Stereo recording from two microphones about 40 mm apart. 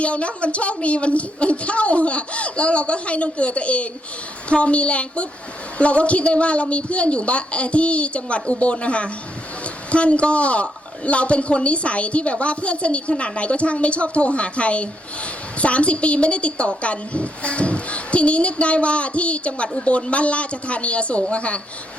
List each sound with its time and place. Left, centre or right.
0.0 s a woman's voice: left